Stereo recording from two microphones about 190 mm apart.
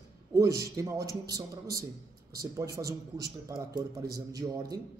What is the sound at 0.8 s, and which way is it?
A man's voice, 20° right (ahead or behind).